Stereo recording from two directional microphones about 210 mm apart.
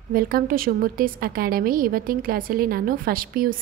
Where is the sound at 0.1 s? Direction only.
45° right (ahead or behind).